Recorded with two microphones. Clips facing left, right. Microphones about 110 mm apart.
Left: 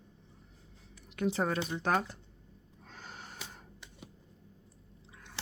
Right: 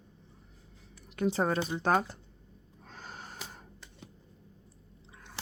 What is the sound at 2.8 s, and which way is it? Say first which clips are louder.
Gasp: right 2 dB; 40° right (ahead or behind).